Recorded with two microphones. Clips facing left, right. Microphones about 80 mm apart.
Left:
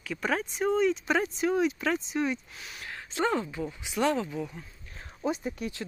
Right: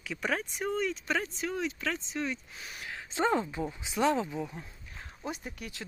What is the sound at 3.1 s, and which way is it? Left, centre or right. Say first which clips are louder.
Speech: even; right.